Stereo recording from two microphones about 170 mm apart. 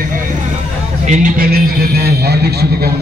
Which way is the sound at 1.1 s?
55° right (ahead or behind).